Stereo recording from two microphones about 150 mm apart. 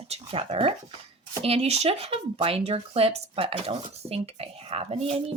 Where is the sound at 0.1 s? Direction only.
40° right (ahead or behind).